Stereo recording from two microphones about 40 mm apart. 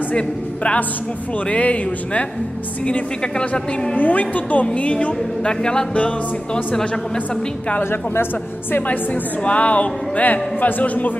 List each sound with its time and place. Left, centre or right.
1.5 s speech: left
2.9 s speech: left
3.9 s a woman's voice: left
4.9 s speech: left
7.8 s a woman's voice: left
8.8 s speech: left